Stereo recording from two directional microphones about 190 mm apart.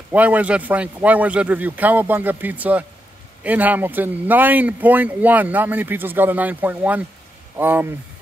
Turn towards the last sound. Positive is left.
turn(degrees=-10)  # may be behind; listen again after turning